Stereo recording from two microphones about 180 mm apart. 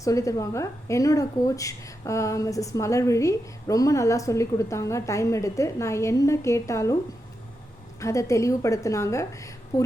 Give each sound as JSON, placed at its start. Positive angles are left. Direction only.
{"t": 0.0, "sound": "a woman's voice", "side_deg": 20}
{"t": 7.9, "sound": "a woman's voice", "side_deg": 15}